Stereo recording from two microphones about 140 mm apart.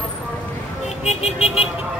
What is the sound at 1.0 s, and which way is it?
Vehicle, 50° left (ahead or behind).